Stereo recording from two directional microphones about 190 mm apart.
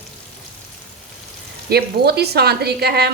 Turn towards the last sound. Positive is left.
turn(degrees=-55)  # may be behind; listen again after turning